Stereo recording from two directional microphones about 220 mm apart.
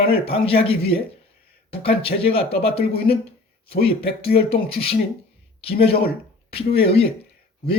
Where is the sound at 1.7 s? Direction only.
25° left (ahead or behind).